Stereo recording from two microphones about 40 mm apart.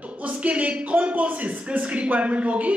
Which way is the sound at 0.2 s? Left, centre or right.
Right.